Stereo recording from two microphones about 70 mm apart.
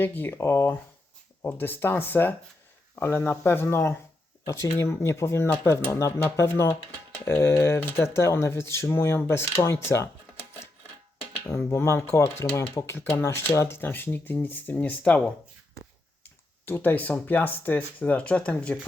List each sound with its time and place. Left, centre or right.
0.0 s speech: left
11.7 s speech: left
16.6 s speech: left